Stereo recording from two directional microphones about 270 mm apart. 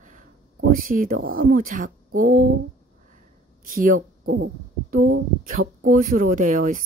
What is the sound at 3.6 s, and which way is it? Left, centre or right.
Speech, right.